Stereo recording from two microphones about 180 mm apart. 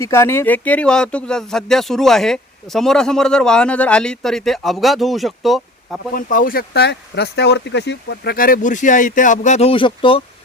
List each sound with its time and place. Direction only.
0.0 s speech: 15° left (ahead or behind)
6.1 s speech: 50° left (ahead or behind); by 10.2 s 30° left (ahead or behind)